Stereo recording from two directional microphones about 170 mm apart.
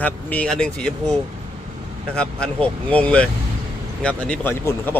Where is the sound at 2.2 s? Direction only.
5° left (ahead or behind).